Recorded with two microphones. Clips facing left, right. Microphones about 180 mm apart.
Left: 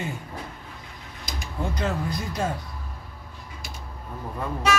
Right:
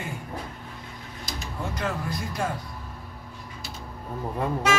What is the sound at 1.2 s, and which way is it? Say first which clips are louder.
Music: left 3 dB; 20° left (ahead or behind).